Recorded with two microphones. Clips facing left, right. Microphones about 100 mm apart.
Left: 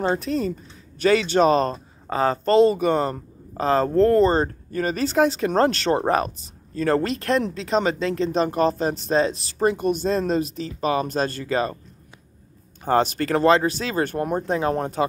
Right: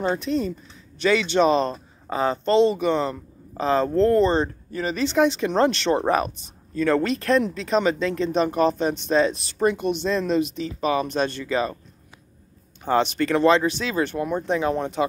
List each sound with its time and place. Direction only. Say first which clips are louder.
0.0 s speech: left 1 dB; 40° left (ahead or behind)
12.8 s speech: left 1 dB; 40° left (ahead or behind)